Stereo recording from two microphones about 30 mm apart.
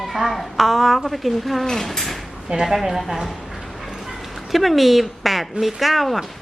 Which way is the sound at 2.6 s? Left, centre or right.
Centre.